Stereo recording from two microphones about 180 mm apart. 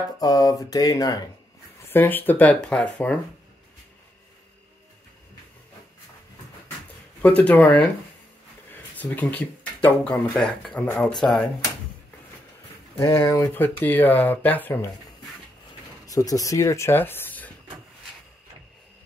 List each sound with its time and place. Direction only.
0.2 s speech: 20° left (ahead or behind)
1.9 s speech: 10° left (ahead or behind)
7.2 s speech: 5° left (ahead or behind)
8.9 s speech: 10° left (ahead or behind)
13.0 s speech: 15° left (ahead or behind)
16.1 s speech: 20° left (ahead or behind)